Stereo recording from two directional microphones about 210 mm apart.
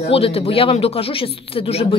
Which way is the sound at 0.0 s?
25° left (ahead or behind).